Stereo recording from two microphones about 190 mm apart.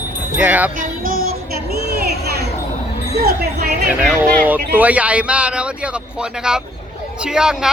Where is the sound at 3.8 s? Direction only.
Centre (ahead or behind).